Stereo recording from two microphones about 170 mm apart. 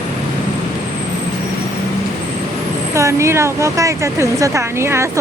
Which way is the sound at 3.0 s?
15° right (ahead or behind).